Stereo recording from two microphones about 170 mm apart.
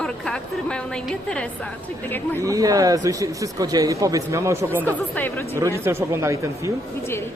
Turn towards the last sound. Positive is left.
turn(degrees=-15)  # may be behind; listen again after turning